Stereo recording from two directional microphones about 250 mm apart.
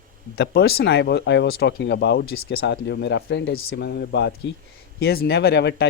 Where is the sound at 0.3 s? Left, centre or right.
Left.